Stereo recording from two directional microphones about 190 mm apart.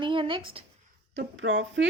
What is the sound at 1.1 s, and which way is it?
Speech, 70° right (ahead or behind).